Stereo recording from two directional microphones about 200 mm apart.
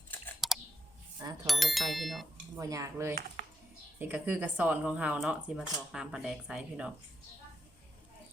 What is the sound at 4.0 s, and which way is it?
Speech, 10° right (ahead or behind).